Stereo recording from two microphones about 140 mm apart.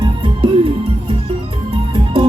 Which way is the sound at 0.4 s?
40° right (ahead or behind).